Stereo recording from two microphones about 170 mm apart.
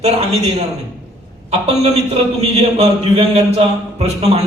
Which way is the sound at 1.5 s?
40° right (ahead or behind).